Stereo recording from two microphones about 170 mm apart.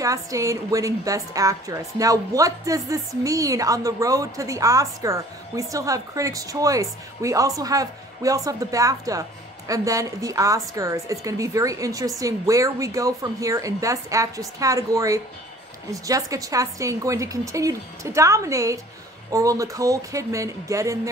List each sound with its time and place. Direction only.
0.0 s a woman's voice: 20° right (ahead or behind)